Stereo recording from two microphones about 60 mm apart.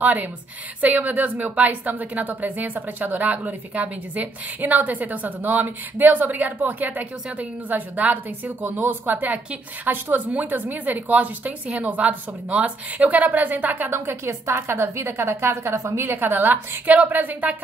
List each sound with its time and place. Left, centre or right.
0.0 s a woman's voice: right
13.9 s a woman's voice: right